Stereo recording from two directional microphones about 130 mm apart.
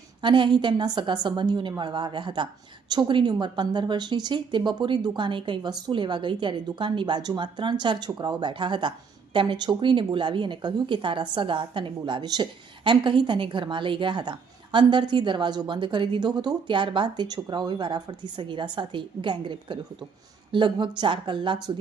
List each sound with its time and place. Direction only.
0.2 s a woman's voice: 40° right (ahead or behind)